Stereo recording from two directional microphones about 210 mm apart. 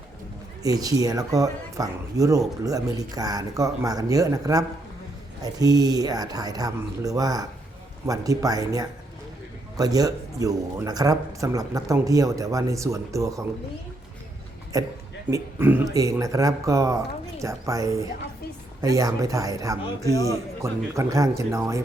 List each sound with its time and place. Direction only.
0.6 s a man's voice: 15° right (ahead or behind)
14.7 s a man's voice: 15° right (ahead or behind)